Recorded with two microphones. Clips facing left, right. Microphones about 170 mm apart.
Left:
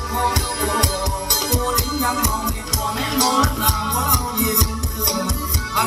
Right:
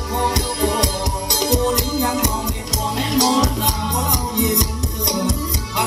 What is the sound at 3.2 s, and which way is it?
Music, 20° right (ahead or behind).